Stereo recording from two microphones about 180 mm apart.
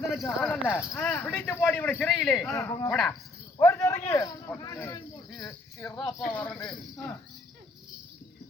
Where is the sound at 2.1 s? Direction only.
Centre (ahead or behind).